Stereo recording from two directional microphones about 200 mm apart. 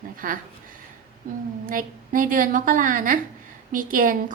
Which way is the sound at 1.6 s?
45° right (ahead or behind).